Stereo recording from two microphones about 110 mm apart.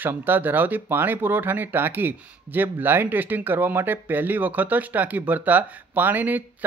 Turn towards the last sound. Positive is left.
turn(degrees=-15)  # may be behind; listen again after turning